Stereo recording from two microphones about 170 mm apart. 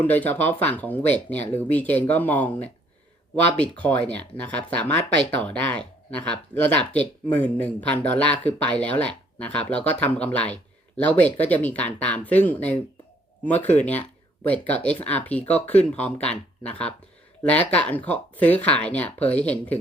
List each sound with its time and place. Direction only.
0.0 s speech: 10° left (ahead or behind)